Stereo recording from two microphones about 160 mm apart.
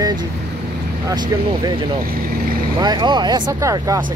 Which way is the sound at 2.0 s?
65° right (ahead or behind).